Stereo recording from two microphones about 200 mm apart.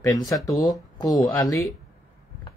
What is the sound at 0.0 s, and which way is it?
Speech, 15° left (ahead or behind).